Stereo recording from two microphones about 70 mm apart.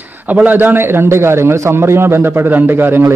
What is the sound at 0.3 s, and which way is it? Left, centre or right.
A man's voice, right.